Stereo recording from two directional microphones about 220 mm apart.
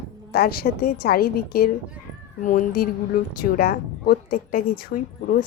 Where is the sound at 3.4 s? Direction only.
45° left (ahead or behind).